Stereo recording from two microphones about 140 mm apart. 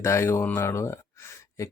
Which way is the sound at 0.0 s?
20° left (ahead or behind).